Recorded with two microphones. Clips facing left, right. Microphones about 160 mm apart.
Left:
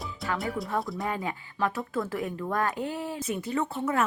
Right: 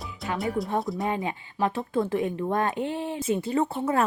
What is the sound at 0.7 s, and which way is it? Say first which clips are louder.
Speech: right 3 dB; 20° right (ahead or behind).